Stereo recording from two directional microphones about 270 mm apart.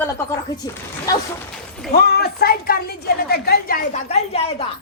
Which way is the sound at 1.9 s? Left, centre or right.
Left.